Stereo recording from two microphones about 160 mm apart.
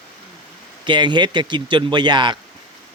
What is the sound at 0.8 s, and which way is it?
Speech, 30° right (ahead or behind).